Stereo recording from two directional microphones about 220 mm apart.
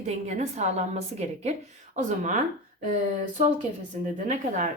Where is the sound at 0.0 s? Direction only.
30° right (ahead or behind).